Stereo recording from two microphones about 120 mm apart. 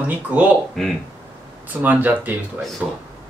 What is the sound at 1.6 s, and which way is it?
Speech, 15° right (ahead or behind).